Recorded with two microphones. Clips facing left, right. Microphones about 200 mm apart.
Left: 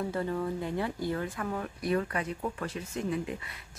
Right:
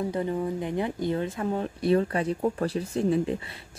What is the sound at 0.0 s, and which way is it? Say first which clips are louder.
Speech: right 4 dB; 20° right (ahead or behind).